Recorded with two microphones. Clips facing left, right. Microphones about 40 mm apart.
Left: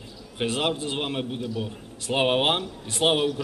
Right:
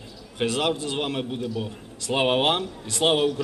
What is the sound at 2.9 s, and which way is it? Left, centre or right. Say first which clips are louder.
Speech: even; left.